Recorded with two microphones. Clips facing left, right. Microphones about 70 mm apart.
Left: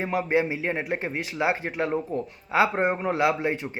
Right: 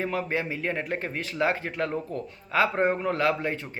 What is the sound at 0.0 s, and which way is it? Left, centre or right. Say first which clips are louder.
A man's voice: left 4 dB; centre.